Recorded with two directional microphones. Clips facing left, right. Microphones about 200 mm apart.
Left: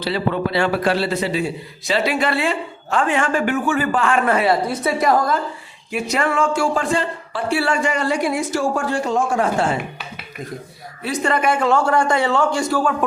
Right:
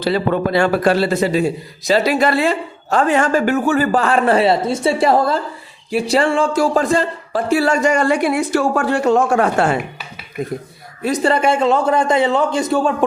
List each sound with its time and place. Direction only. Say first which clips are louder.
0.0 s a man's voice: right 4 dB; 45° right (ahead or behind); by 9.7 s 65° right (ahead or behind)
11.0 s a man's voice: right 4 dB; 35° right (ahead or behind)